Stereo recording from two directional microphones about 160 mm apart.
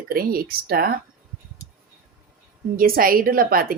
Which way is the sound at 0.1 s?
65° right (ahead or behind).